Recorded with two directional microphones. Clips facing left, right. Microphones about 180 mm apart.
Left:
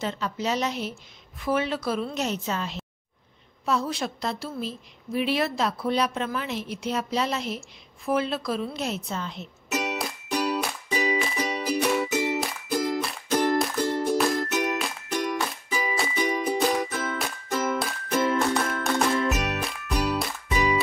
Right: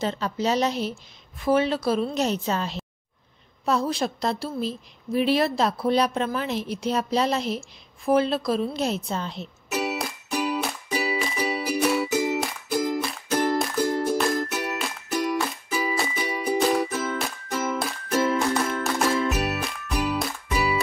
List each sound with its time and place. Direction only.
0.0 s a woman's voice: 35° right (ahead or behind)
9.7 s music: 5° right (ahead or behind)